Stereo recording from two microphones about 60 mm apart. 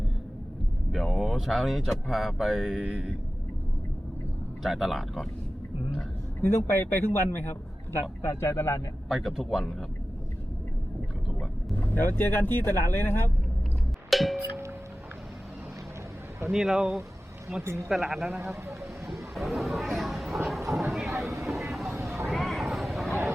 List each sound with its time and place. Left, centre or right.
0.9 s speech: centre
4.6 s speech: centre
6.4 s speech: left
8.2 s speech: left
9.0 s speech: centre
11.8 s speech: left
14.1 s music: centre
16.5 s speech: centre
17.6 s speech: right
17.9 s speech: centre
19.0 s a sound: centre
20.8 s vehicle: centre